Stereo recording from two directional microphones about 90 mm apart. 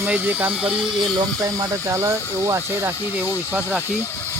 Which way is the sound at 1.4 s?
35° right (ahead or behind).